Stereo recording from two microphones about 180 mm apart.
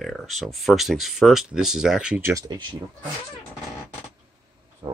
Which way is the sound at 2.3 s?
25° right (ahead or behind).